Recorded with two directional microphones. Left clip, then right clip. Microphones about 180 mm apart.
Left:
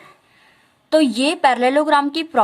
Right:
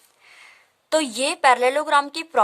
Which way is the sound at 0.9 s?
30° right (ahead or behind).